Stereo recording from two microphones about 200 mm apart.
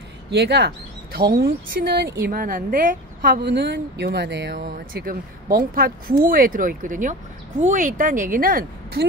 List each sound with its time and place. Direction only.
0.3 s a woman's voice: 55° right (ahead or behind); by 3.5 s 40° right (ahead or behind)
3.5 s speech: 60° right (ahead or behind)
4.6 s a woman's voice: 45° right (ahead or behind)